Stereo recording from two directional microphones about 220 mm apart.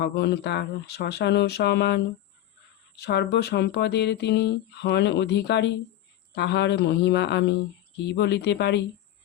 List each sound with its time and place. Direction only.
0.0 s speech: 50° left (ahead or behind)